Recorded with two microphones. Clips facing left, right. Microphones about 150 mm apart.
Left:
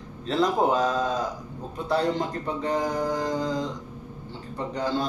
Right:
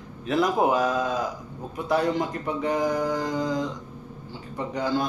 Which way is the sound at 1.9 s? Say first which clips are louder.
Right 1 dB; 15° right (ahead or behind).